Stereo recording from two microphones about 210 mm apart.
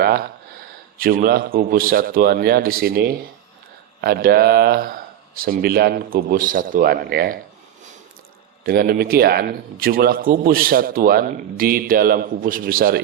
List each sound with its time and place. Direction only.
0.0 s speech: 45° right (ahead or behind)
8.6 s speech: 45° right (ahead or behind)